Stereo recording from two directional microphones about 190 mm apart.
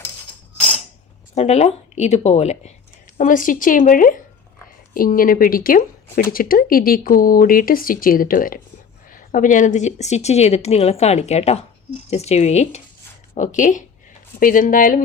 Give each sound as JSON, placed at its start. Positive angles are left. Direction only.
{"t": 1.4, "sound": "a woman's voice", "side_deg": 35}